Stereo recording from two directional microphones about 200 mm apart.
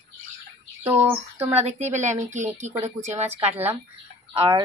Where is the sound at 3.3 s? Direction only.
10° right (ahead or behind).